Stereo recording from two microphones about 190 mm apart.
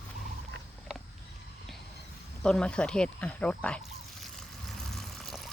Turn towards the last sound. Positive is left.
turn(degrees=0)  # may be behind; listen again after turning